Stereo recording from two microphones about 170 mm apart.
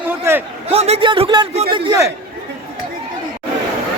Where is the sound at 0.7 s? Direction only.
35° right (ahead or behind).